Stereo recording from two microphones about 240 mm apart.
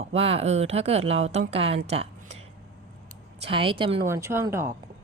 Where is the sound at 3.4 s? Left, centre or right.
Right.